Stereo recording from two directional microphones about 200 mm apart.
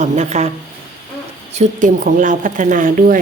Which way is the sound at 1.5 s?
40° right (ahead or behind).